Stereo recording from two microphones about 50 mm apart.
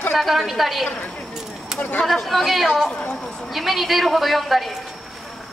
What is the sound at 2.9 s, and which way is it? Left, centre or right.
Speech, left.